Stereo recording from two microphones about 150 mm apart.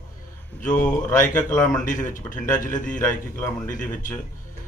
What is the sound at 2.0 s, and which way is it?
Speech, 65° left (ahead or behind).